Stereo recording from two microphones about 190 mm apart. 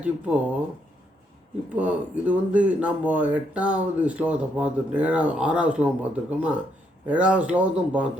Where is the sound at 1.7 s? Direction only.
5° right (ahead or behind).